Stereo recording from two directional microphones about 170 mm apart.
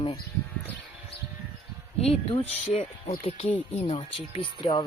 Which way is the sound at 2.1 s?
35° left (ahead or behind).